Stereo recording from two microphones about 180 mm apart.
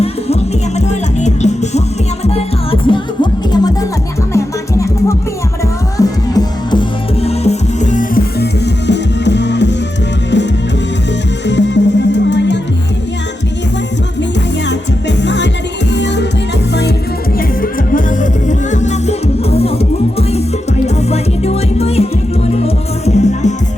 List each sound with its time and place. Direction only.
0.8 s music: 40° left (ahead or behind)
2.8 s music: 25° left (ahead or behind); by 12.5 s 75° left (ahead or behind)
14.7 s music: 75° left (ahead or behind)
17.3 s music: 50° left (ahead or behind)